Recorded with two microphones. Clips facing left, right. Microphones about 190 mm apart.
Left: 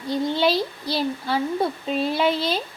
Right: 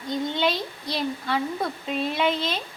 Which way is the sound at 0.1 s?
35° left (ahead or behind).